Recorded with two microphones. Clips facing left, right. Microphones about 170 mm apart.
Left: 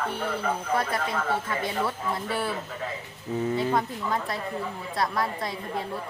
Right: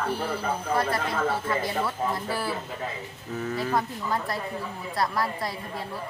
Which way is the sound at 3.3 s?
25° left (ahead or behind).